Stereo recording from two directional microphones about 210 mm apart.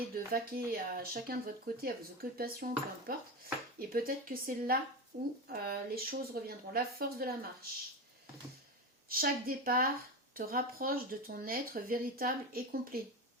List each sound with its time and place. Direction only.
0.1 s speech: 45° right (ahead or behind)
9.0 s speech: 45° right (ahead or behind)